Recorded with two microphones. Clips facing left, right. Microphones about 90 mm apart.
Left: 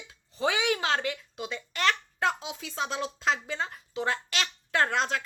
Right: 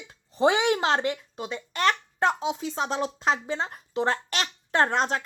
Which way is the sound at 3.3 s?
25° right (ahead or behind).